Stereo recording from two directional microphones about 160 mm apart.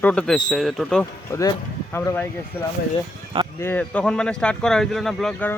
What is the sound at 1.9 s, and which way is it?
Speech, 15° left (ahead or behind).